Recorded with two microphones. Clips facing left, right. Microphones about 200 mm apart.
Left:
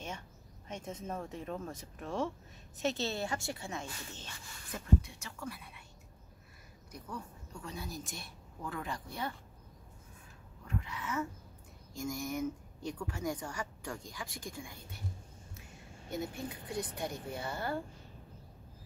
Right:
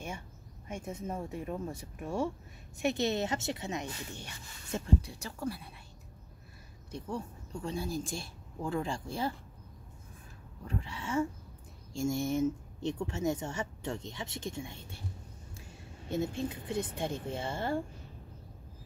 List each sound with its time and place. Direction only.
0.7 s speech: 10° right (ahead or behind)
4.6 s speech: 30° right (ahead or behind)
6.9 s speech: 30° right (ahead or behind)
10.7 s speech: 30° right (ahead or behind)
16.1 s speech: 25° right (ahead or behind)